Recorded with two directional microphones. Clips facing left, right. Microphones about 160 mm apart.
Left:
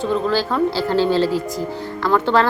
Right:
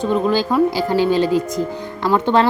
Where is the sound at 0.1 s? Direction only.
15° right (ahead or behind).